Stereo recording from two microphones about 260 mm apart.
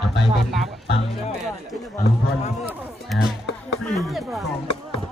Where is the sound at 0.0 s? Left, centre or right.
Centre.